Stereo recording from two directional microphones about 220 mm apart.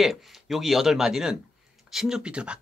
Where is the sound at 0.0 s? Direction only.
Centre (ahead or behind).